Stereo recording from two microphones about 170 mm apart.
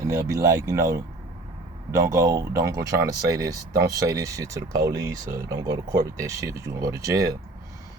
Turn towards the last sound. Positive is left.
turn(degrees=-20)  # may be behind; listen again after turning